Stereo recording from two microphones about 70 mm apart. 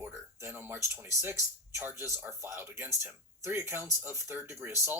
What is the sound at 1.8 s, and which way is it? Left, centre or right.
Speech, right.